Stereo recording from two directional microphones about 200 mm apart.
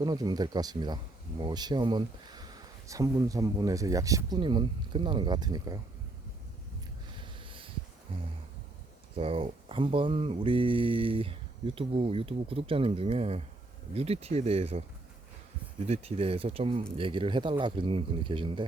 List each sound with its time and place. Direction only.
0.0 s speech: 20° right (ahead or behind)
7.4 s a sound: 25° right (ahead or behind)
8.1 s speech: 25° right (ahead or behind)
15.9 s speech: 30° right (ahead or behind)